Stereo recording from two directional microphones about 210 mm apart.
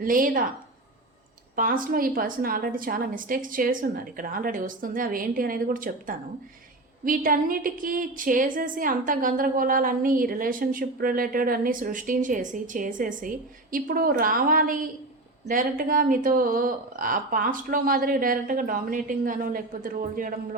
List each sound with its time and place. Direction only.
0.0 s a woman's voice: 40° right (ahead or behind)
1.5 s a woman's voice: 40° right (ahead or behind)